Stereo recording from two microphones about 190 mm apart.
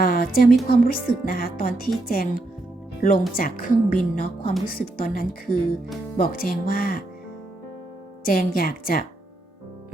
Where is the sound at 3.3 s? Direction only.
45° left (ahead or behind).